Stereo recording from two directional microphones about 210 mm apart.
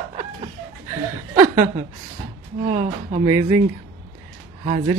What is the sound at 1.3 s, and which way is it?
Chuckle, 35° right (ahead or behind).